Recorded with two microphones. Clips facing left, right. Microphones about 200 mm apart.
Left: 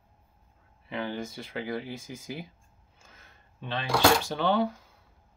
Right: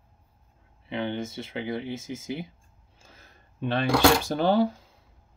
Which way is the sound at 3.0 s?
30° right (ahead or behind).